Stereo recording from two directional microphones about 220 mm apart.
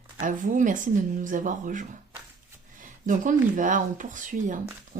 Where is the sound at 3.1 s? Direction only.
35° right (ahead or behind).